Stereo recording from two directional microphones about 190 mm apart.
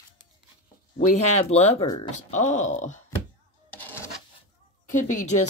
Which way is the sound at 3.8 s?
10° left (ahead or behind).